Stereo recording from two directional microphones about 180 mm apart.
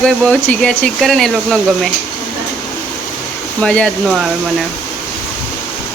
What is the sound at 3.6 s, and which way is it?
Speech, 5° left (ahead or behind).